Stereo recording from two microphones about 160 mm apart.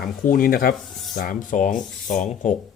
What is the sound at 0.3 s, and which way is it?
Speech, 65° left (ahead or behind).